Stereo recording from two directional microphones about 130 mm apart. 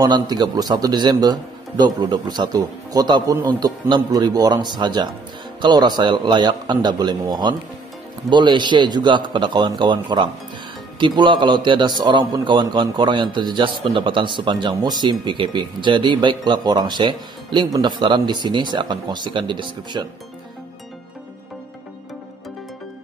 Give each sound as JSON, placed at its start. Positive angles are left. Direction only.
{"t": 0.0, "sound": "a man's voice", "side_deg": -30}